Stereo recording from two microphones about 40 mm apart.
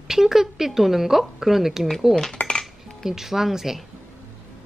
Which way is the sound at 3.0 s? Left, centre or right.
Centre.